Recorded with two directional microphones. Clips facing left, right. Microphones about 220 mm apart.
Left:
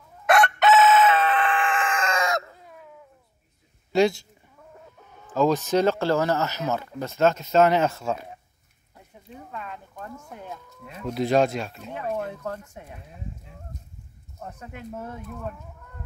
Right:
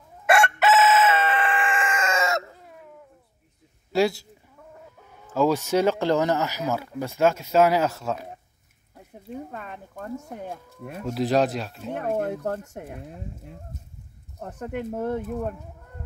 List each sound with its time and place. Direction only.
0.3 s chicken: 5° right (ahead or behind)
5.0 s speech: 10° right (ahead or behind)
9.3 s speech: 45° right (ahead or behind)
10.1 s speech: 30° right (ahead or behind)
11.1 s speech: centre (ahead or behind)
11.9 s speech: 55° right (ahead or behind)
14.9 s speech: 55° right (ahead or behind)